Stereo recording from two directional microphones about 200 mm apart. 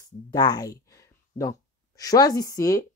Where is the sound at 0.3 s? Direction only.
20° left (ahead or behind).